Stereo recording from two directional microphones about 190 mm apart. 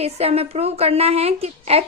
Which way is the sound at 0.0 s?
30° right (ahead or behind).